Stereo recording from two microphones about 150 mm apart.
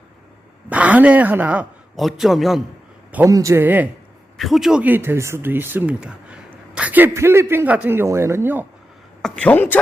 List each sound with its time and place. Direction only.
0.7 s a man's voice: 10° right (ahead or behind)
3.2 s speech: 20° right (ahead or behind)
4.4 s speech: centre (ahead or behind); by 8.6 s 15° right (ahead or behind)
9.2 s speech: 5° left (ahead or behind)